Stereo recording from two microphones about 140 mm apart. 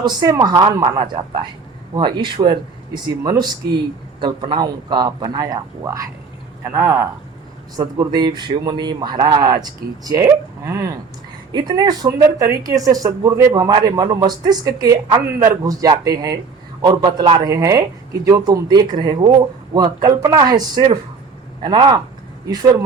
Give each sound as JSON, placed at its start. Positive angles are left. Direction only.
{"t": 0.0, "sound": "speech", "side_deg": -30}
{"t": 7.8, "sound": "speech", "side_deg": -30}
{"t": 22.4, "sound": "speech", "side_deg": -25}